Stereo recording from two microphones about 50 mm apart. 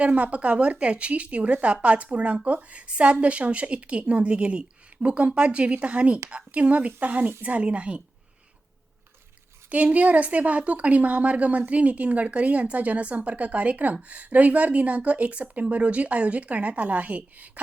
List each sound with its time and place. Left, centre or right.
0.0 s speech: right
9.6 s speech: right